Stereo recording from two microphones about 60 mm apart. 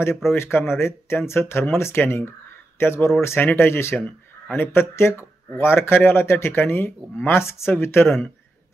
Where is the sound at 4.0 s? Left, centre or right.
Left.